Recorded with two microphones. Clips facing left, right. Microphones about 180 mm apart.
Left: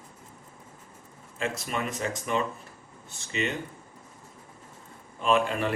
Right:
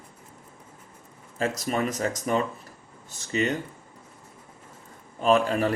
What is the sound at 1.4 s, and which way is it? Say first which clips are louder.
Speech: right 5 dB; 40° right (ahead or behind).